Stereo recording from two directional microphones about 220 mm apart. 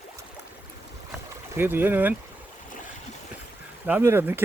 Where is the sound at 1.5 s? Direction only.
10° right (ahead or behind).